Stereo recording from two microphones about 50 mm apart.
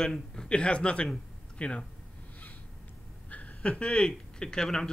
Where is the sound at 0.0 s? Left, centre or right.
Centre.